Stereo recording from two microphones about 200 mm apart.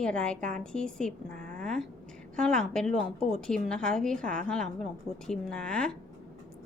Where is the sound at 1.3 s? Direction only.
40° right (ahead or behind).